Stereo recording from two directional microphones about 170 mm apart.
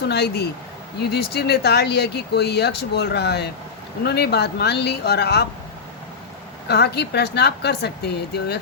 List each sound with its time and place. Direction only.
0.1 s speech: 75° left (ahead or behind)
6.7 s speech: 70° left (ahead or behind)